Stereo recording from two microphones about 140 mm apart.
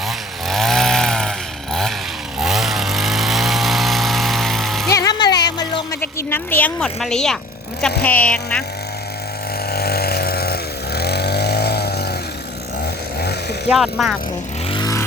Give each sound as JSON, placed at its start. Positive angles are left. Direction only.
{"t": 0.4, "sound": "chainsaw", "side_deg": 0}
{"t": 2.4, "sound": "vehicle", "side_deg": 0}
{"t": 4.9, "sound": "music", "side_deg": 25}
{"t": 6.0, "sound": "a sound", "side_deg": 15}
{"t": 7.8, "sound": "speech", "side_deg": 10}
{"t": 9.6, "sound": "vehicle", "side_deg": 90}
{"t": 13.7, "sound": "speech", "side_deg": -5}